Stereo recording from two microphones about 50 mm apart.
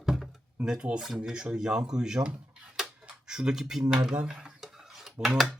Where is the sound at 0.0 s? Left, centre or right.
Centre.